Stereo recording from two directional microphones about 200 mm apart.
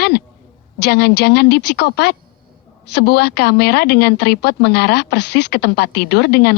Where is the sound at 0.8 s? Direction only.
55° left (ahead or behind).